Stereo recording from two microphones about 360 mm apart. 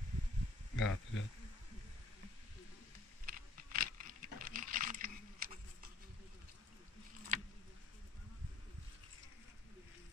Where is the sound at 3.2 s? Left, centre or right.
Right.